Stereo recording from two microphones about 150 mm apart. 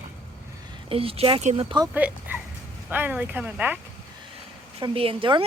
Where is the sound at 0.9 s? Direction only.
40° right (ahead or behind).